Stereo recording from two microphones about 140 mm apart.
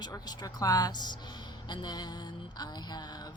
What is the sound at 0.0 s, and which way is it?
Speech, 25° left (ahead or behind).